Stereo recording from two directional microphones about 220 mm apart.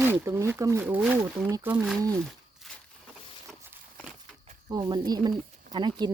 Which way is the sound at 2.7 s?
Centre (ahead or behind).